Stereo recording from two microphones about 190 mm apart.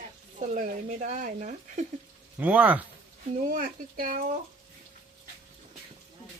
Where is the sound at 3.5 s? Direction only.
50° right (ahead or behind).